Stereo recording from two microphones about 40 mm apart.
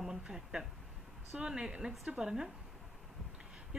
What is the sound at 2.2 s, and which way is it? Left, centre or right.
Speech, centre.